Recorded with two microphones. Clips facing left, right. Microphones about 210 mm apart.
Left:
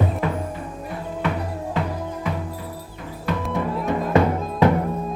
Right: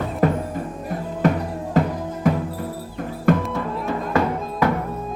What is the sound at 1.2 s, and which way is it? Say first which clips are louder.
Music: right 6 dB; 40° right (ahead or behind).